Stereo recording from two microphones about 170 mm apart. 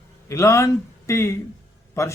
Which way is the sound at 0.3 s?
15° left (ahead or behind).